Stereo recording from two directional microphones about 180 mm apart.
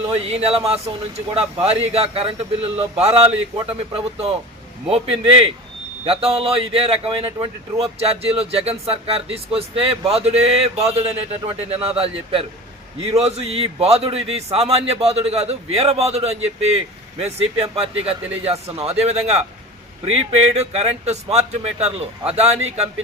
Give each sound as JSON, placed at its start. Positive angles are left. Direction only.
{"t": 0.1, "sound": "speech", "side_deg": -35}
{"t": 20.6, "sound": "speech", "side_deg": -35}